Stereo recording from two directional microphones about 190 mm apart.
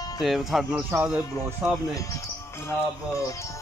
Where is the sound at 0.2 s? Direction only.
Centre (ahead or behind).